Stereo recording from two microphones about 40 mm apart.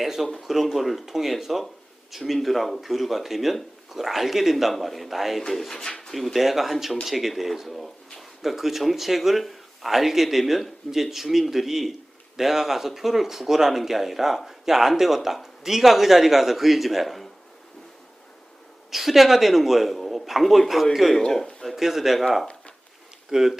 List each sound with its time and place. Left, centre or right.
0.0 s speech: centre
18.9 s speech: centre
21.2 s speech: centre
21.8 s speech: centre